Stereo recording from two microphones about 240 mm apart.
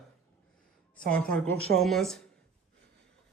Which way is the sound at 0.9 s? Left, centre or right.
Centre.